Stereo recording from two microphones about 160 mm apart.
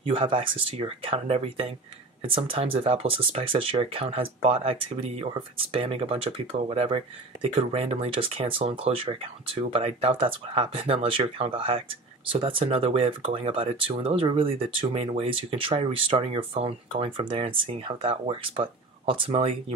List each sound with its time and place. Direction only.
0.0 s speech: 35° right (ahead or behind)